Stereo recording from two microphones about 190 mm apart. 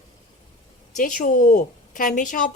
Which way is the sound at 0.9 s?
40° left (ahead or behind).